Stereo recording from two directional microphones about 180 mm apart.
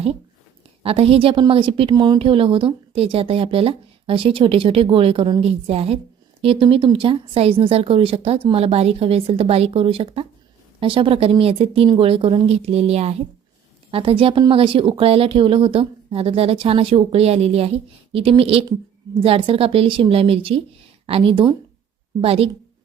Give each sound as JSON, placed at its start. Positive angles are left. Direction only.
{"t": 0.8, "sound": "a woman's voice", "side_deg": -30}